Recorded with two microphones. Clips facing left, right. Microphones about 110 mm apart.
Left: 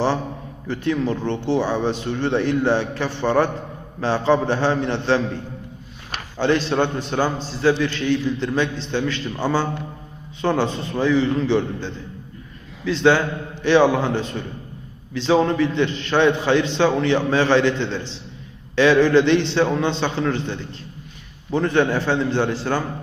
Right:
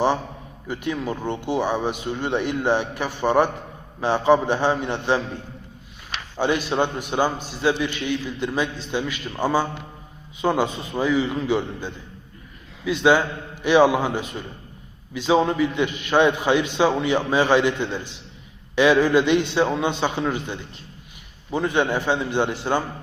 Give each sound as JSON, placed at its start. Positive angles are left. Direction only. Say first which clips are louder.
{"t": 0.7, "sound": "a man's voice", "louder": "left 5 dB", "side_deg": -15}